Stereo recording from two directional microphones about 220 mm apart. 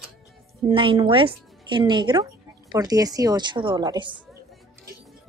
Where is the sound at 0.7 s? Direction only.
25° right (ahead or behind).